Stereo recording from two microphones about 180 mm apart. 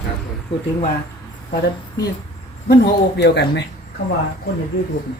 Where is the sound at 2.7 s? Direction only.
70° left (ahead or behind).